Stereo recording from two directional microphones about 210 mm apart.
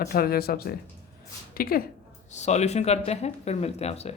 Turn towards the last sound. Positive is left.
turn(degrees=30)  # may be behind; listen again after turning